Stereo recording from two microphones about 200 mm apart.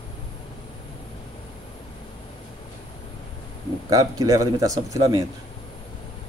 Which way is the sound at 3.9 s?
15° right (ahead or behind).